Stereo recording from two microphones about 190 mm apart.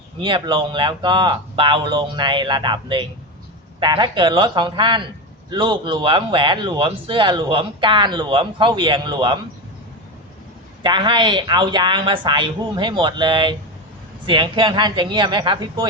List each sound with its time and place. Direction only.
0.2 s a man's voice: 25° right (ahead or behind)
10.8 s a man's voice: 25° right (ahead or behind)